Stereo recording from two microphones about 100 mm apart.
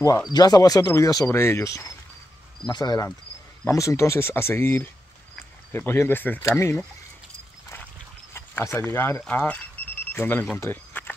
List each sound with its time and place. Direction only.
0.3 s speech: 40° left (ahead or behind)
2.6 s speech: 45° left (ahead or behind)
3.6 s speech: 30° left (ahead or behind)
8.3 s speech: 25° left (ahead or behind)
9.8 s a sound: 15° left (ahead or behind)
10.1 s speech: 20° left (ahead or behind)
10.6 s a sound: 20° left (ahead or behind)